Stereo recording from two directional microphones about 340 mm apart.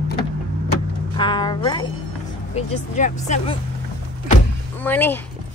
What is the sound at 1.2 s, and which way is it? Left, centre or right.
A woman's voice, centre.